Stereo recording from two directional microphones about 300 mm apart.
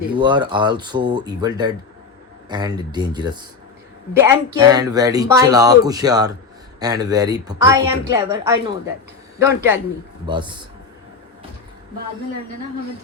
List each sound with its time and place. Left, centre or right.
0.2 s speech: centre